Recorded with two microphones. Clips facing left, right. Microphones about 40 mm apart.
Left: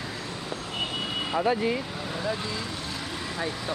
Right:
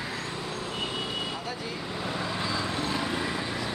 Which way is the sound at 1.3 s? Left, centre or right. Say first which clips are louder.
Left 10 dB; left.